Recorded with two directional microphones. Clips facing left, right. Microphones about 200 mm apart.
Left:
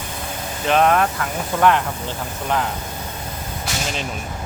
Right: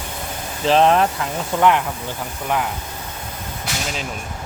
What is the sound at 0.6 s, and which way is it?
Speech, 30° right (ahead or behind).